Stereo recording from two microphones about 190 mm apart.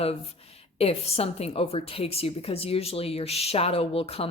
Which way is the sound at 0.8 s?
30° left (ahead or behind).